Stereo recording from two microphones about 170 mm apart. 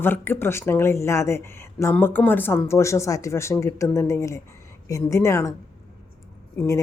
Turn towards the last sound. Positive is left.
turn(degrees=15)  # may be behind; listen again after turning